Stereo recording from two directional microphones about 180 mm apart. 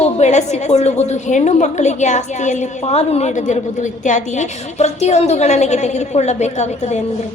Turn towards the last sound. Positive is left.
turn(degrees=40)  # may be behind; listen again after turning